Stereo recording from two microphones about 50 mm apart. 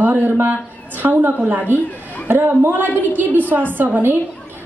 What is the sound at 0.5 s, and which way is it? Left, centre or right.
A woman's voice, right.